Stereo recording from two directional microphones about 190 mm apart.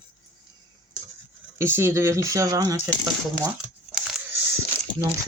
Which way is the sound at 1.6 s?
10° right (ahead or behind).